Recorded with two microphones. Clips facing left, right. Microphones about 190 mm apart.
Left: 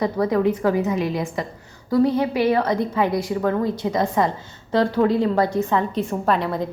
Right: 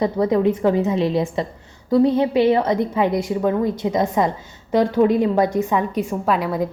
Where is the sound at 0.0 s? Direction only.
20° right (ahead or behind).